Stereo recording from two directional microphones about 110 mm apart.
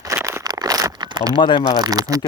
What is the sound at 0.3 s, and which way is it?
Crumpling, 30° right (ahead or behind).